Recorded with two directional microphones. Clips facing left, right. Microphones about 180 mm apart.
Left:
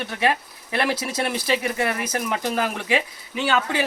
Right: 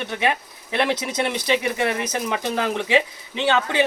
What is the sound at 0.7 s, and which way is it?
Speech, 20° right (ahead or behind).